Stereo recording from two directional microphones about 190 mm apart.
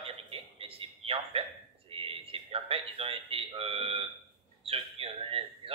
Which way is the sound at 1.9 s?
30° right (ahead or behind).